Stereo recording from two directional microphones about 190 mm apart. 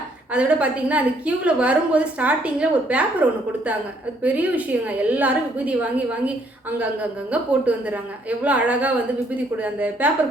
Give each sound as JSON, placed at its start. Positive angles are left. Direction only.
{"t": 0.3, "sound": "a woman's voice", "side_deg": -5}